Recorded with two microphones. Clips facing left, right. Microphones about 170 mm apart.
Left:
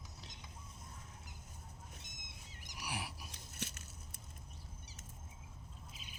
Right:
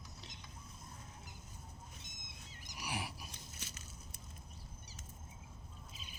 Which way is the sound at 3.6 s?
60° left (ahead or behind).